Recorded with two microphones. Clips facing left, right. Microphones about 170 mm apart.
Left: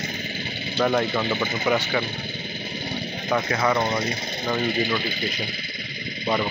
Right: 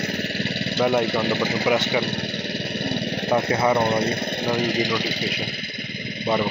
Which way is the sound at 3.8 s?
60° right (ahead or behind).